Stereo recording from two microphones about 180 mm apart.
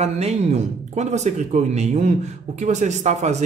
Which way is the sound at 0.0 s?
35° right (ahead or behind).